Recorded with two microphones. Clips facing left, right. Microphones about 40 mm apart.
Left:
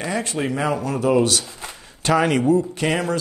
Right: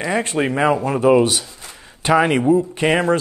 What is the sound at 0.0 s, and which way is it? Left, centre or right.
Speech, right.